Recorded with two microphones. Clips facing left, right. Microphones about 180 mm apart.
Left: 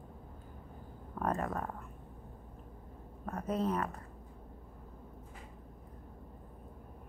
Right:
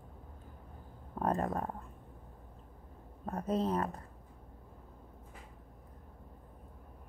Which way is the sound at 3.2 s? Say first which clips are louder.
Right 1 dB; 30° right (ahead or behind).